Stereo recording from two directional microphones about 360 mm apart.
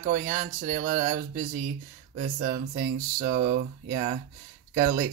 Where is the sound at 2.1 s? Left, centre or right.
Right.